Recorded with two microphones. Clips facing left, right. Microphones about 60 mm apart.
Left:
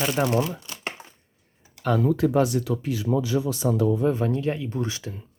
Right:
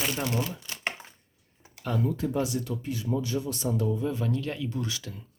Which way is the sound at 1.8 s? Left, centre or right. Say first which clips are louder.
Left 7 dB; left.